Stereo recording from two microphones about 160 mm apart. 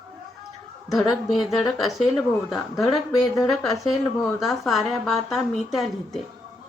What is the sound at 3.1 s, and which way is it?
Speech, 20° left (ahead or behind).